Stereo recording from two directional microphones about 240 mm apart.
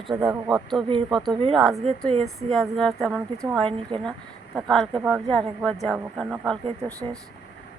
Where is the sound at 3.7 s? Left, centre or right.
Right.